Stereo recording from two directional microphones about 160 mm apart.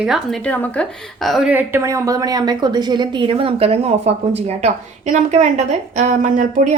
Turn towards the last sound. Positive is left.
turn(degrees=-50)  # may be behind; listen again after turning